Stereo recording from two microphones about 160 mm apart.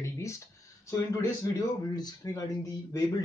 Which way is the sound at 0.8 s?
15° left (ahead or behind).